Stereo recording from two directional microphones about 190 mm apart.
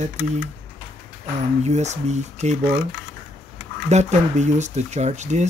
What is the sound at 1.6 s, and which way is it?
Speech, 35° right (ahead or behind).